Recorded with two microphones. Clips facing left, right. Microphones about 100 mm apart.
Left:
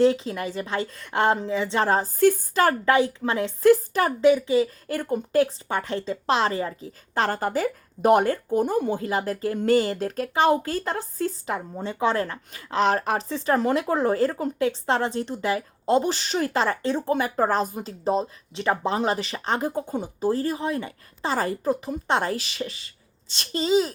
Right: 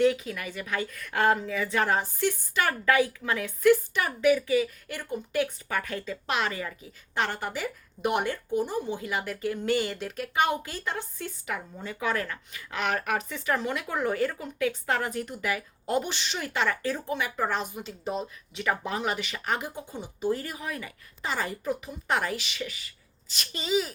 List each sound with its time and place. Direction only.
0.0 s speech: 30° left (ahead or behind)
2.9 s speech: 25° left (ahead or behind)
4.3 s speech: 25° left (ahead or behind)
4.9 s speech: 45° left (ahead or behind); by 17.0 s 30° left (ahead or behind)
17.1 s speech: 40° left (ahead or behind)